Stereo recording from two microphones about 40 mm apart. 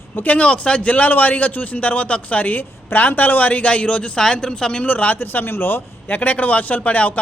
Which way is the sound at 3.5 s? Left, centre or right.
Left.